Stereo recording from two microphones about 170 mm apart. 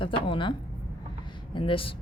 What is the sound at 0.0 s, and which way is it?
Speech, 30° left (ahead or behind).